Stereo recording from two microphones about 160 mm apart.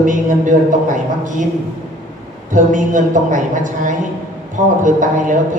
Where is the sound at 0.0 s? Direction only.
55° right (ahead or behind).